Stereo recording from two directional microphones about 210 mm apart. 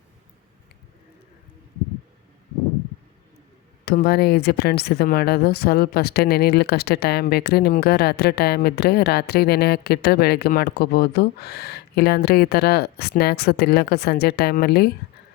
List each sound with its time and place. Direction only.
3.8 s speech: 45° left (ahead or behind)